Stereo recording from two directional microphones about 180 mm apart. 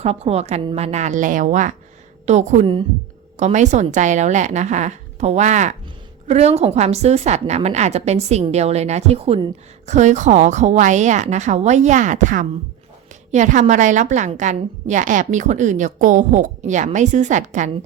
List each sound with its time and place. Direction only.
0.0 s a woman's voice: 35° right (ahead or behind)